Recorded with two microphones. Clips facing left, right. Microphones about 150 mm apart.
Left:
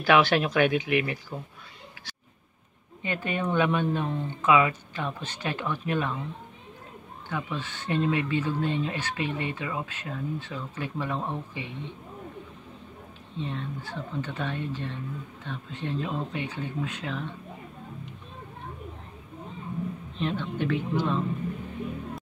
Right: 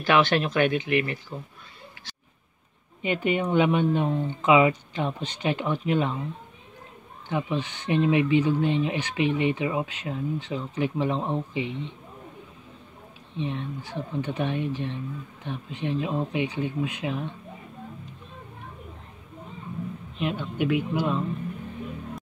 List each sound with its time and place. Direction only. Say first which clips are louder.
0.0 s speech: even; 10° left (ahead or behind)
3.0 s speech: right 5 dB; 15° right (ahead or behind)
7.2 s speech: right 5 dB; 20° right (ahead or behind)
13.4 s speech: right 3 dB; 15° right (ahead or behind)
20.2 s speech: right 2 dB; 10° right (ahead or behind)